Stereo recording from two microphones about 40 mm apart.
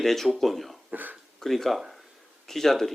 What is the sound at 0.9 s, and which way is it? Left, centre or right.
Speech, right.